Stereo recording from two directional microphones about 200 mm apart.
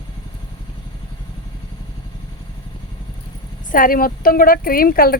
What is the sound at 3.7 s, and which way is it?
Speech, 45° left (ahead or behind).